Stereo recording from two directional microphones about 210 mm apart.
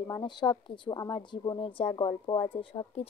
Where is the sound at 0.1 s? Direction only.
20° left (ahead or behind).